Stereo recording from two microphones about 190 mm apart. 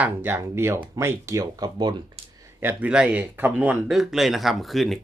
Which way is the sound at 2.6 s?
10° right (ahead or behind).